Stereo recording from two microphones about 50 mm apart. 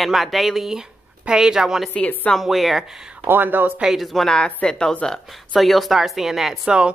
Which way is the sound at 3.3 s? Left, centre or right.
Right.